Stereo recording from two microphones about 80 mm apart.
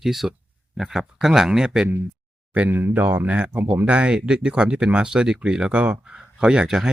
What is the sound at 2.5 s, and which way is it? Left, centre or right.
Speech, right.